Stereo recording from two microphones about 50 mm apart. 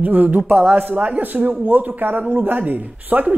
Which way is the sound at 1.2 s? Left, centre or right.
Right.